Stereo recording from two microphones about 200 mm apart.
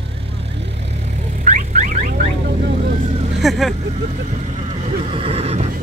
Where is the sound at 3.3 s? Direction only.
Centre (ahead or behind).